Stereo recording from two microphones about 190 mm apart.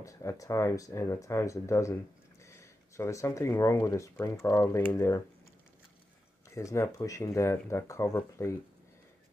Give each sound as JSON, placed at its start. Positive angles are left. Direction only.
{"t": 0.0, "sound": "speech", "side_deg": 15}
{"t": 6.5, "sound": "speech", "side_deg": 15}